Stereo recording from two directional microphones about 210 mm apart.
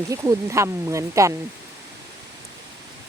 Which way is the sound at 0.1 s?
15° right (ahead or behind).